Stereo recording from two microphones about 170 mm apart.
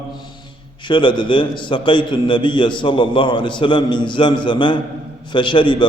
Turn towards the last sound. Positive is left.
turn(degrees=30)  # may be behind; listen again after turning